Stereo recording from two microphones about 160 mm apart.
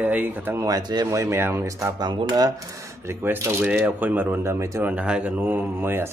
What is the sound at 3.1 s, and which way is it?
Speech, 15° right (ahead or behind).